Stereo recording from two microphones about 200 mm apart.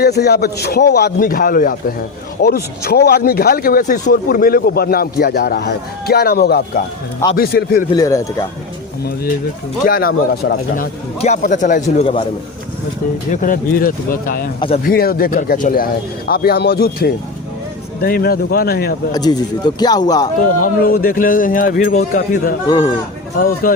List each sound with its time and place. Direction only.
0.0 s a man's voice: 55° left (ahead or behind)
7.9 s speech: 20° left (ahead or behind)
9.8 s a man's voice: 45° left (ahead or behind)
11.2 s a man's voice: 40° left (ahead or behind)
13.3 s a man's voice: 40° left (ahead or behind)
19.1 s speech: 20° left (ahead or behind)
20.8 s a man's voice: 45° left (ahead or behind)
22.6 s speech: 20° left (ahead or behind)
23.6 s a man's voice: 45° left (ahead or behind)